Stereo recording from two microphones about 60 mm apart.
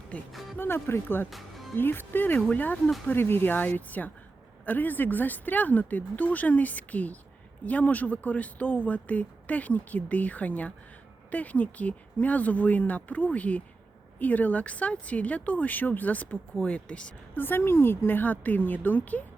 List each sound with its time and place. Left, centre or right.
0.5 s a woman's voice: left
1.3 s music: centre
1.7 s a woman's voice: left; by 17.2 s centre
17.3 s a woman's voice: left